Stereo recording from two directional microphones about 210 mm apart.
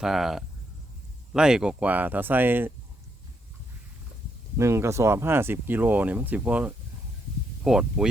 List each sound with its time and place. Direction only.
0.0 s speech: centre (ahead or behind)
4.5 s speech: 15° right (ahead or behind)